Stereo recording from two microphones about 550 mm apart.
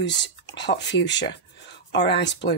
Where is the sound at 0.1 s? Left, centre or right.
Centre.